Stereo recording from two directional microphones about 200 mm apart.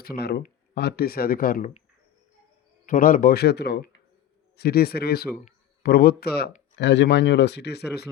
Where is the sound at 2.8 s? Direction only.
45° left (ahead or behind).